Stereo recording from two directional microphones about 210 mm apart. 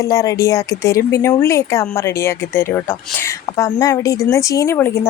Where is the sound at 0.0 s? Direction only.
15° left (ahead or behind).